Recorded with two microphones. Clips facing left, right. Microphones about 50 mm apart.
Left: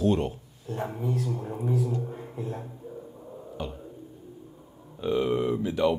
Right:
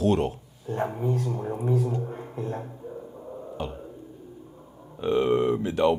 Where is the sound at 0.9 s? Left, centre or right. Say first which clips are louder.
Right 3 dB; centre.